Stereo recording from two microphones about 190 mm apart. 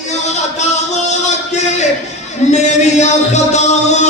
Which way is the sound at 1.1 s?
40° left (ahead or behind).